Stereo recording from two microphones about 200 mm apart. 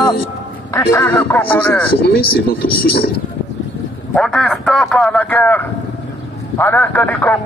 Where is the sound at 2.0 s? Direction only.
50° left (ahead or behind).